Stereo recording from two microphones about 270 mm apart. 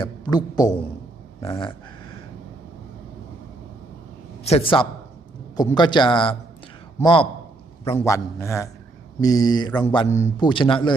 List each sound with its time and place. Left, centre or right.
0.0 s speech: centre
4.4 s a man's voice: left